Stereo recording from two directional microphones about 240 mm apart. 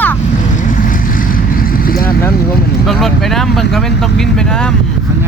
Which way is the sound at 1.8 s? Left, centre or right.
Left.